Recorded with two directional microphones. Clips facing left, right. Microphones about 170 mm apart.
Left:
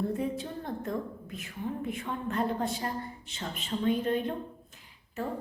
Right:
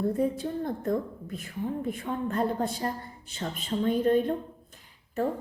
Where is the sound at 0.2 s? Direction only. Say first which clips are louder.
Right 6 dB; 40° right (ahead or behind).